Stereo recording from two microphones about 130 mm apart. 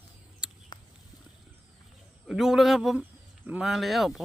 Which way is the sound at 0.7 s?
35° left (ahead or behind).